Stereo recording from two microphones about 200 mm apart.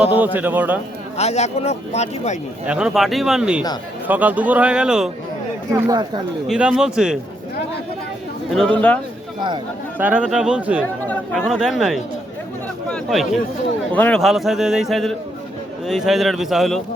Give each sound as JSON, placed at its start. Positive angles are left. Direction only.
{"t": 0.3, "sound": "a man's voice", "side_deg": -10}
{"t": 1.1, "sound": "speech", "side_deg": 35}
{"t": 2.6, "sound": "a man's voice", "side_deg": -5}
{"t": 5.7, "sound": "speech", "side_deg": -20}
{"t": 6.5, "sound": "a man's voice", "side_deg": -5}
{"t": 8.4, "sound": "a man's voice", "side_deg": 5}
{"t": 10.0, "sound": "a man's voice", "side_deg": -5}
{"t": 11.0, "sound": "a man's voice", "side_deg": 5}